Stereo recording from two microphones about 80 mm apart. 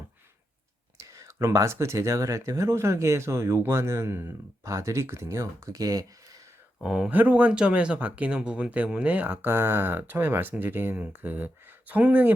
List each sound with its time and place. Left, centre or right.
1.0 s speech: right
6.8 s speech: centre